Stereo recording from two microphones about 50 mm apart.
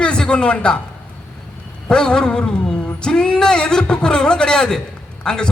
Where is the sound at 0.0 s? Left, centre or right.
Centre.